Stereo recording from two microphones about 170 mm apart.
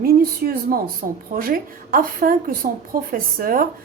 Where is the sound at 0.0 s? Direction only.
60° right (ahead or behind).